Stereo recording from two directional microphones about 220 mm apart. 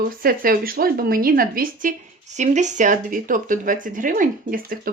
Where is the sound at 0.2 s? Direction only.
40° right (ahead or behind).